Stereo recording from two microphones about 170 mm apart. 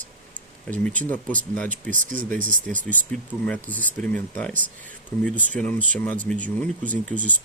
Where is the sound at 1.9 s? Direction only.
50° right (ahead or behind).